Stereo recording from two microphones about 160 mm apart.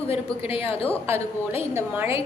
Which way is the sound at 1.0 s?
15° right (ahead or behind).